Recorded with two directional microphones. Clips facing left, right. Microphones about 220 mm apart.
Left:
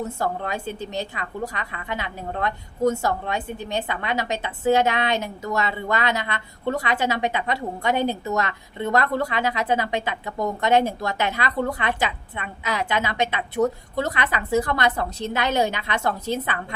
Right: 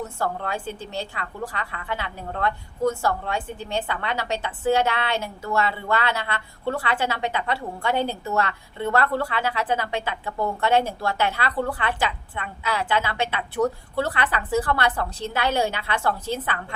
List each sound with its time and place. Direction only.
0.2 s a woman's voice: 20° left (ahead or behind)